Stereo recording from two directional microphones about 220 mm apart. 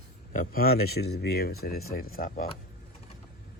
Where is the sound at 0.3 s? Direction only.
45° left (ahead or behind).